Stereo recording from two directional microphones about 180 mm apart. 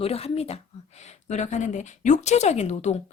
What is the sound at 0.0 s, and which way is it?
A woman's voice, 35° left (ahead or behind).